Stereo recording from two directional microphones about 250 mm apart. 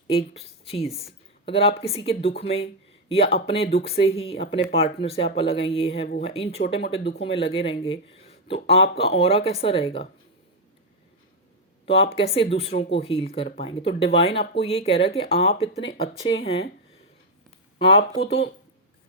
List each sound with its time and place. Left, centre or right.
0.1 s a woman's voice: left
11.9 s speech: left
17.7 s speech: left